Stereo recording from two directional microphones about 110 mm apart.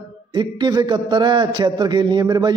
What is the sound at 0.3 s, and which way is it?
A man's voice, 45° right (ahead or behind).